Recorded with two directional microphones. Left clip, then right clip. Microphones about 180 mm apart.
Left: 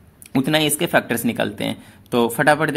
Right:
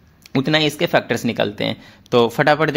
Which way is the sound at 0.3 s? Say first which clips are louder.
Right 1 dB; 15° right (ahead or behind).